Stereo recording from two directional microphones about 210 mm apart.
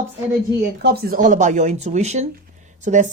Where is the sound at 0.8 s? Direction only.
50° right (ahead or behind).